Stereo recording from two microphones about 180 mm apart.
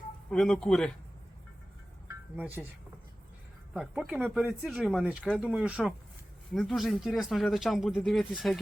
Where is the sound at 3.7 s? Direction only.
5° right (ahead or behind).